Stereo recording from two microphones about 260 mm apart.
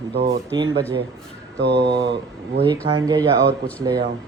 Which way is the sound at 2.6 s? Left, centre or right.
Centre.